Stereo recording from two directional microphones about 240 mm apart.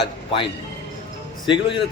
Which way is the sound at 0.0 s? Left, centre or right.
Left.